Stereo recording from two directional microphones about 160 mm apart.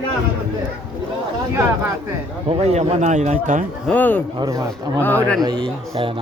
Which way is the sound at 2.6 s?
45° right (ahead or behind).